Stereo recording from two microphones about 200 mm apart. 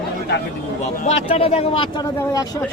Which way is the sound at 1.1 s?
30° left (ahead or behind).